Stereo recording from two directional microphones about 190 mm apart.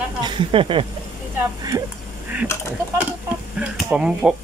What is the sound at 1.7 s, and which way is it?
Speech, 15° right (ahead or behind).